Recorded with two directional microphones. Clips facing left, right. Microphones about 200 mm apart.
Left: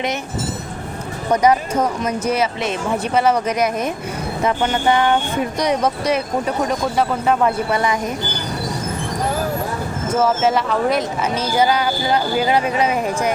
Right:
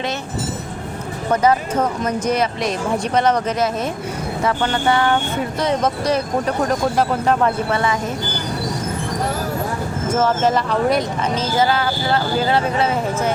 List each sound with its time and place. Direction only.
1.3 s speech: 15° left (ahead or behind)
6.7 s speech: centre (ahead or behind)
7.4 s speech: 15° left (ahead or behind)
10.2 s speech: 5° left (ahead or behind)